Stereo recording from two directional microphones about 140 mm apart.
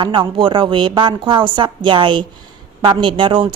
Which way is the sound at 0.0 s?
35° right (ahead or behind).